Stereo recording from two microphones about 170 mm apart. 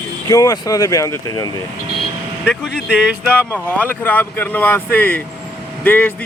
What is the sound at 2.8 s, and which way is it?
Speech, 10° right (ahead or behind).